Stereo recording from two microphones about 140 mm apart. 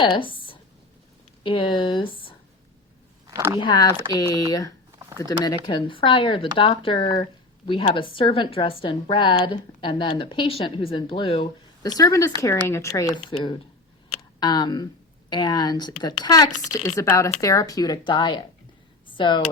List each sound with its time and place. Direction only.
0.0 s a woman's voice: 35° left (ahead or behind)
3.2 s speech: 20° right (ahead or behind)
3.6 s speech: 30° left (ahead or behind)
5.1 s a woman's voice: 25° left (ahead or behind)
19.0 s a sound: 35° left (ahead or behind)